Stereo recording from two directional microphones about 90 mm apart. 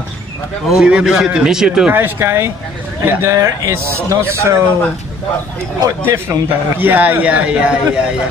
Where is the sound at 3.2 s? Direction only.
40° right (ahead or behind).